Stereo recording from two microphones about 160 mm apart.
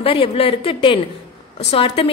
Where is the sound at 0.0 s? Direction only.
35° left (ahead or behind).